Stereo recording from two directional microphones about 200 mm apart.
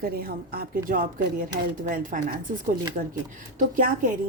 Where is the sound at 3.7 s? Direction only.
45° right (ahead or behind).